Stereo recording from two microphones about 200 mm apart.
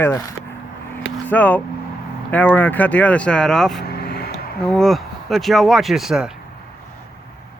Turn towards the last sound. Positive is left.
turn(degrees=-5)  # may be behind; listen again after turning